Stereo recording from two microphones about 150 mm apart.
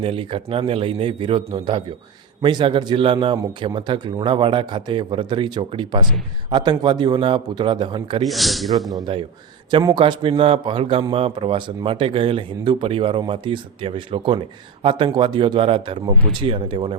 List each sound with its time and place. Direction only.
0.0 s speech: 35° right (ahead or behind)
8.3 s speech: centre (ahead or behind)
8.9 s speech: 30° right (ahead or behind)